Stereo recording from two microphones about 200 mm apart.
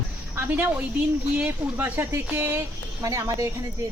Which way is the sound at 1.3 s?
10° right (ahead or behind).